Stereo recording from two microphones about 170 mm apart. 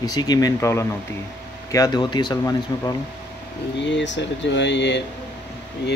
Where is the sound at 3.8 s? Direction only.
90° left.